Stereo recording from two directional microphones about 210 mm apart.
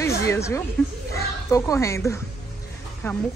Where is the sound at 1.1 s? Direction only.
15° left (ahead or behind).